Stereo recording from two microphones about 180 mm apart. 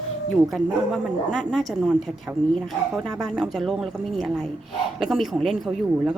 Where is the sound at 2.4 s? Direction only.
40° right (ahead or behind).